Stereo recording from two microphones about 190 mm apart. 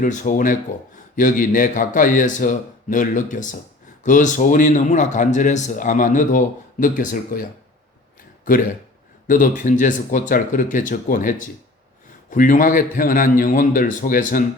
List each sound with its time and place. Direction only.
0.0 s a man's voice: 45° left (ahead or behind)
8.5 s a man's voice: 45° left (ahead or behind)